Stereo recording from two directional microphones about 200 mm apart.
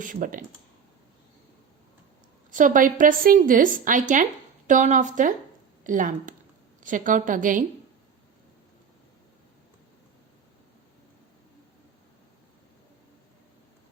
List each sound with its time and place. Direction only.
0.0 s a woman's voice: 40° right (ahead or behind)
2.5 s a woman's voice: 40° right (ahead or behind)